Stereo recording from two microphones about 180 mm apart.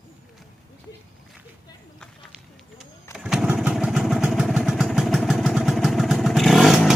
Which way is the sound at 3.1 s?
5° right (ahead or behind).